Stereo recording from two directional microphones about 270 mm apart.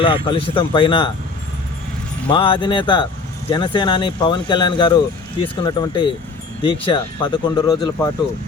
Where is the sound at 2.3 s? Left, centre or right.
Centre.